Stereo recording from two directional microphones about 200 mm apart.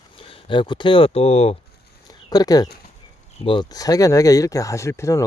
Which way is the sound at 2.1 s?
20° left (ahead or behind).